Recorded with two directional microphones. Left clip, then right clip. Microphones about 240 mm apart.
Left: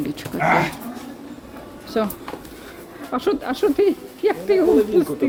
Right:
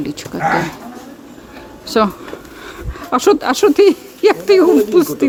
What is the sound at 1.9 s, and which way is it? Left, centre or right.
Speech, right.